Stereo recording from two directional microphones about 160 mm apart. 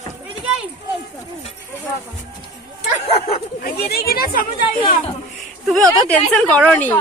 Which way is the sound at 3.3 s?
75° left (ahead or behind).